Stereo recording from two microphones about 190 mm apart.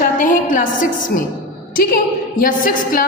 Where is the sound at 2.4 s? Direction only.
45° left (ahead or behind).